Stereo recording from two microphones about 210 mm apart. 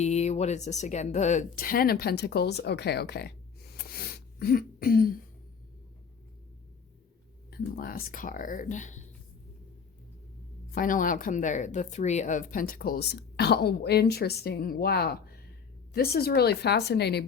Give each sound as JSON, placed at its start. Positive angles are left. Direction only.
{"t": 0.0, "sound": "speech", "side_deg": 30}
{"t": 7.5, "sound": "speech", "side_deg": 45}
{"t": 10.8, "sound": "a woman's voice", "side_deg": 40}